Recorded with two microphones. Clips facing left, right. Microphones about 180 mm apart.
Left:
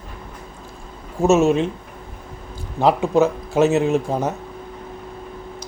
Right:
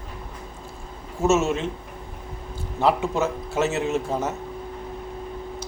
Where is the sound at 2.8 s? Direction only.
15° left (ahead or behind).